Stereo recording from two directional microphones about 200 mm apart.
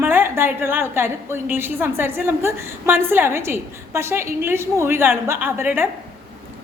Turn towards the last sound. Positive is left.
turn(degrees=-10)  # may be behind; listen again after turning